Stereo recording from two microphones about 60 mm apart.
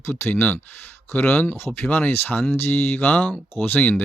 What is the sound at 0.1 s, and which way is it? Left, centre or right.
Speech, left.